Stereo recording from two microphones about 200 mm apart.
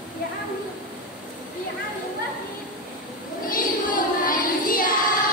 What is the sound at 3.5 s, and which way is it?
Child singing, 45° left (ahead or behind).